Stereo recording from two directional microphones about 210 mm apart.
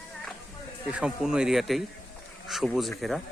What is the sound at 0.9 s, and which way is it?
Speech, 5° right (ahead or behind).